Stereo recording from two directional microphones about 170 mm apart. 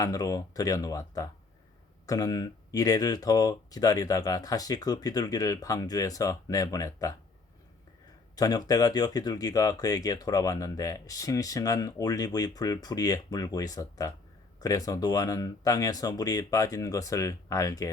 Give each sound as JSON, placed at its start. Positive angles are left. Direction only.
{"t": 0.0, "sound": "speech", "side_deg": 20}
{"t": 8.4, "sound": "speech", "side_deg": 20}